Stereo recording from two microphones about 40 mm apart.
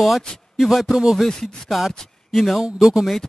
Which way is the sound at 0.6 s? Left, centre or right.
Centre.